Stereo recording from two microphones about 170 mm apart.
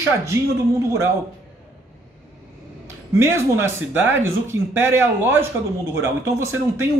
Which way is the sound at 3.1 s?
15° right (ahead or behind).